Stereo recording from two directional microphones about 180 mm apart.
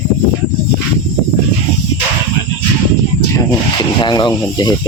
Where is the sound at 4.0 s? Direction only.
25° left (ahead or behind).